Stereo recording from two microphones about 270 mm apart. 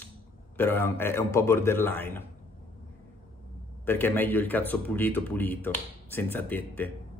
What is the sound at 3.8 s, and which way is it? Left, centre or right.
Speech, centre.